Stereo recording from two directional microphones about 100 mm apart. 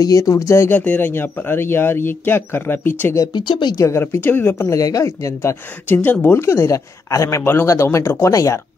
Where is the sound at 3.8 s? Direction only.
30° left (ahead or behind).